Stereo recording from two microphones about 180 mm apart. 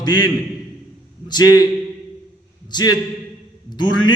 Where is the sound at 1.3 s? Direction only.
20° left (ahead or behind).